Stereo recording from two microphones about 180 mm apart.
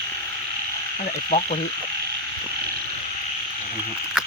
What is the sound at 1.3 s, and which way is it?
Speech, 40° left (ahead or behind).